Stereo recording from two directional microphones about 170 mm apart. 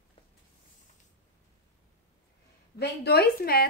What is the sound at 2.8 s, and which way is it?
Speech, 70° left (ahead or behind).